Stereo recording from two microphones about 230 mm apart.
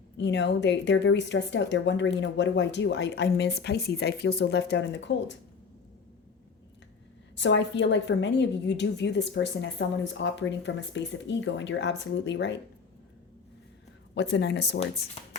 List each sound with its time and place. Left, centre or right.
0.2 s a woman's voice: left
7.3 s a woman's voice: left
14.2 s a woman's voice: left
14.8 s speech: left